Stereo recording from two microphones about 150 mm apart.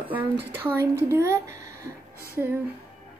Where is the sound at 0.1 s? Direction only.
10° right (ahead or behind).